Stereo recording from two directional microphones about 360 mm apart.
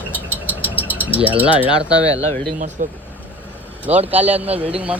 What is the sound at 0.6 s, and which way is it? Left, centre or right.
Cricket, centre.